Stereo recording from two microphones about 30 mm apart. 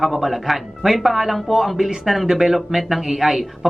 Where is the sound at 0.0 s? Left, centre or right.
Centre.